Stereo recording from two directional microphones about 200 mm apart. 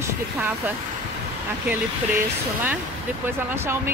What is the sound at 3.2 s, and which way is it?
Speech, 10° right (ahead or behind).